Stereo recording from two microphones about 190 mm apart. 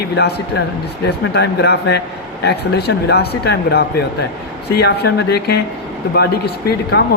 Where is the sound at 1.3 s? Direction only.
60° left (ahead or behind).